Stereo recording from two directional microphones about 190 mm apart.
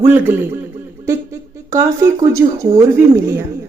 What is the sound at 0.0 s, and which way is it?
A woman's voice, 10° right (ahead or behind).